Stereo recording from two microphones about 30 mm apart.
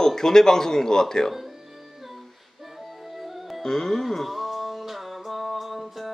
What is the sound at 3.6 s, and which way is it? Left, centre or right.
Music, centre.